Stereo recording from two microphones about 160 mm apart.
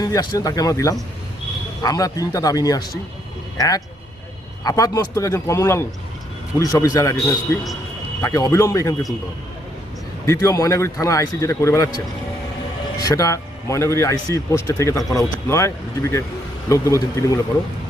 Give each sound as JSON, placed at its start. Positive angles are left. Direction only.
{"t": 0.0, "sound": "a man's voice", "side_deg": 25}
{"t": 4.6, "sound": "a man's voice", "side_deg": 25}
{"t": 10.2, "sound": "a man's voice", "side_deg": 20}
{"t": 13.0, "sound": "a man's voice", "side_deg": 20}